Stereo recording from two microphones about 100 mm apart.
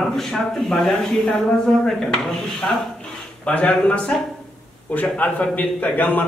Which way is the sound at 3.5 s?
10° left (ahead or behind).